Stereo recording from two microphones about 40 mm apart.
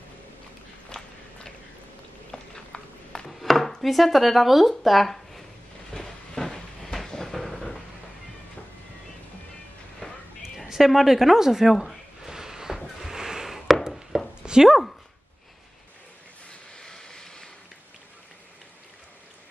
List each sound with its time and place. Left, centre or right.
2.3 s a sound: centre
3.3 s speech: centre
5.9 s train: centre
7.1 s vehicle: centre
10.0 s a sound: left
10.7 s speech: centre
11.7 s speech: centre
12.3 s a sound: centre
13.8 s chopping: centre
14.4 s a sound: centre
14.7 s speech: centre
16.4 s vehicle: centre